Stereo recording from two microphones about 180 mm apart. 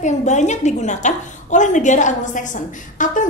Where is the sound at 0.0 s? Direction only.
40° left (ahead or behind).